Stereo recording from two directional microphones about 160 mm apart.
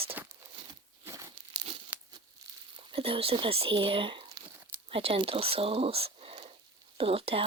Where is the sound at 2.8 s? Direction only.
35° right (ahead or behind).